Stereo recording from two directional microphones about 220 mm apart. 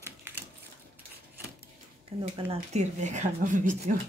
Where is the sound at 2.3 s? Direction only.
30° right (ahead or behind).